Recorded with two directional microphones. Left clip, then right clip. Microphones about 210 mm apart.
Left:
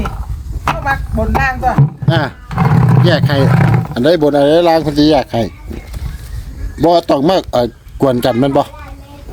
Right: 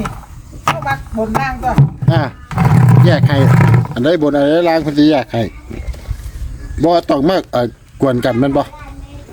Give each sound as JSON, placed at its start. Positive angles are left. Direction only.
{"t": 0.7, "sound": "a sound", "side_deg": -30}
{"t": 1.4, "sound": "speech", "side_deg": 25}
{"t": 2.0, "sound": "speech", "side_deg": 10}
{"t": 2.5, "sound": "a sound", "side_deg": -30}
{"t": 3.0, "sound": "speech", "side_deg": 10}
{"t": 3.4, "sound": "speech", "side_deg": -25}
{"t": 3.9, "sound": "speech", "side_deg": 20}
{"t": 6.7, "sound": "speech", "side_deg": 10}